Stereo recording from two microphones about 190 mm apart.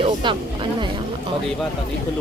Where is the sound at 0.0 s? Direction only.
25° right (ahead or behind).